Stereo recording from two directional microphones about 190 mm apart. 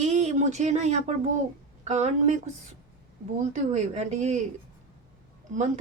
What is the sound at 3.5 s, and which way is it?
Speech, 40° right (ahead or behind).